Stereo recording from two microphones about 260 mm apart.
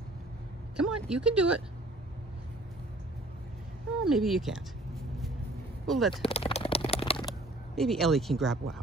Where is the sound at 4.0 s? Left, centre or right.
Centre.